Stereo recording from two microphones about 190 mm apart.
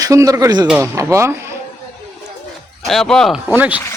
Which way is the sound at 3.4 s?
10° right (ahead or behind).